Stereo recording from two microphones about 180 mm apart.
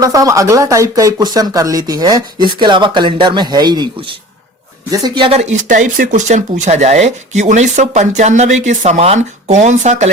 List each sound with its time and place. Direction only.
0.0 s speech: 20° right (ahead or behind); by 10.1 s 40° right (ahead or behind)